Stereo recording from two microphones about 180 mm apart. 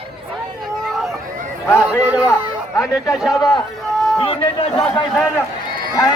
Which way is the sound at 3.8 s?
Centre (ahead or behind).